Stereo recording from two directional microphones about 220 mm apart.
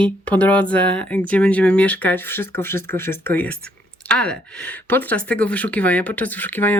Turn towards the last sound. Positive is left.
turn(degrees=10)  # may be behind; listen again after turning